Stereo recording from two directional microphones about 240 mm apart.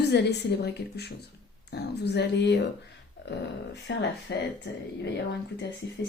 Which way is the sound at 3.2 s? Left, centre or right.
Left.